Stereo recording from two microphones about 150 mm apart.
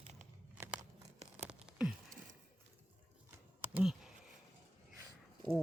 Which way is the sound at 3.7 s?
5° right (ahead or behind).